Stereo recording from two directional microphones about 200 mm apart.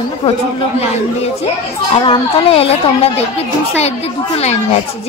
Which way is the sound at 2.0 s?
25° left (ahead or behind).